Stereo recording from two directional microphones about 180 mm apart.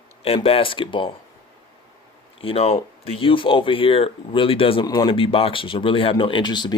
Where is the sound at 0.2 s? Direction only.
30° left (ahead or behind).